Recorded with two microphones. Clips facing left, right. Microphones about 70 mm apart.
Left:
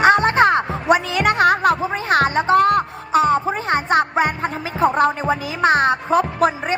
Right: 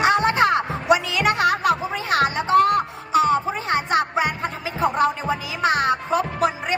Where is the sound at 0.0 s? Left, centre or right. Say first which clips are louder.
Left 4 dB; left.